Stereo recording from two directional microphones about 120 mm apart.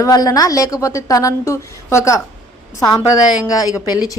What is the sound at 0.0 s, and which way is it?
A woman's voice, 30° left (ahead or behind).